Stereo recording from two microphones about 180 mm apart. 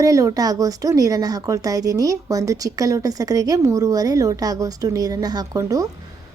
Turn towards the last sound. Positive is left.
turn(degrees=-20)  # may be behind; listen again after turning